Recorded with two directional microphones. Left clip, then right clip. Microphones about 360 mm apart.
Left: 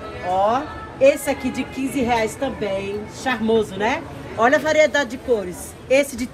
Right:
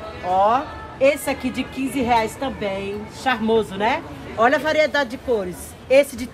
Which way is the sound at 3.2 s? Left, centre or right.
Centre.